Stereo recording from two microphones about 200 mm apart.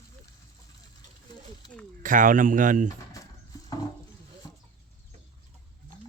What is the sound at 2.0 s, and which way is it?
Speech, 40° right (ahead or behind).